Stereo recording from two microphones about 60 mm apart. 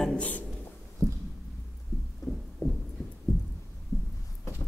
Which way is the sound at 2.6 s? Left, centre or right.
Left.